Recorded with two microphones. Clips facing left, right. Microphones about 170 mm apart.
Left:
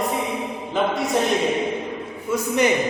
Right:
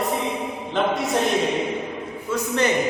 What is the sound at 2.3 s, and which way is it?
Speech, 15° left (ahead or behind).